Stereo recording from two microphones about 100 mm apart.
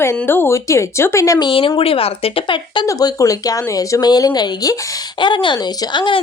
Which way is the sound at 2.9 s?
35° left (ahead or behind).